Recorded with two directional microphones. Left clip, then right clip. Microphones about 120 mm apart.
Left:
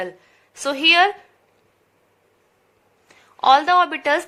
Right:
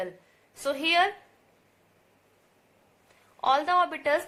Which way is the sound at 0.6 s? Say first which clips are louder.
Left 9 dB; 25° left (ahead or behind).